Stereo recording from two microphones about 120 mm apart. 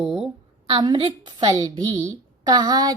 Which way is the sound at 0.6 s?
40° right (ahead or behind).